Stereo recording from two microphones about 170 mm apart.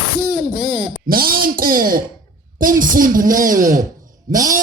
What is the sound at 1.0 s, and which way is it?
Speech, 60° right (ahead or behind).